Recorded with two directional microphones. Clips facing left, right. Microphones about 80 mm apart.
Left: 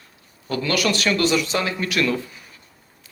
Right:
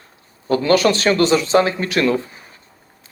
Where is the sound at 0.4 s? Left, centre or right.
Right.